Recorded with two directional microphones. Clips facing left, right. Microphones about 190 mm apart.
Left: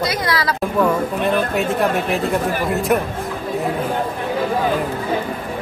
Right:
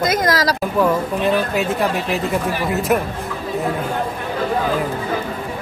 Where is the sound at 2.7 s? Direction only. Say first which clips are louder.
Even; centre (ahead or behind).